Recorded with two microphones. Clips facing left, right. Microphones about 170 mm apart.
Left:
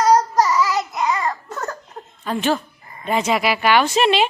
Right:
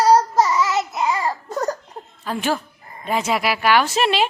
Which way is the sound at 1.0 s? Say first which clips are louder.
Even; 30° right (ahead or behind).